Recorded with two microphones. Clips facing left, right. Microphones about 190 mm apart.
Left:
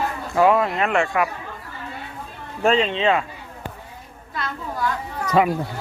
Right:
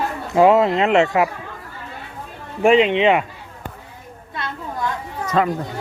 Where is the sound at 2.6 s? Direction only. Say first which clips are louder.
Right 5 dB; 15° right (ahead or behind).